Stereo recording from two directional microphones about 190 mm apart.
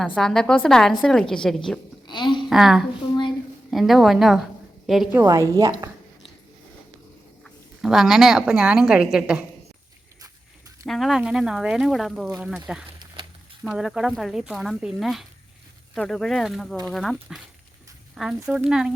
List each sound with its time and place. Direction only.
0.0 s speech: centre (ahead or behind)
2.0 s speech: 25° left (ahead or behind)
2.5 s speech: centre (ahead or behind)
5.1 s a woman's voice: 15° right (ahead or behind)
7.4 s a woman's voice: centre (ahead or behind)
10.8 s speech: centre (ahead or behind)